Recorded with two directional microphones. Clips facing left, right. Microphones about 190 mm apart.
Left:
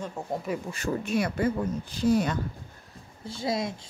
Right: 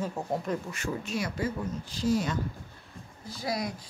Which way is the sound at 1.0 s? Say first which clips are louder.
Left 7 dB; 60° left (ahead or behind).